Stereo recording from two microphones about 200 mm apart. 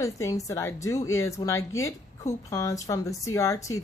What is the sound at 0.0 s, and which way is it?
A woman's voice, 15° left (ahead or behind).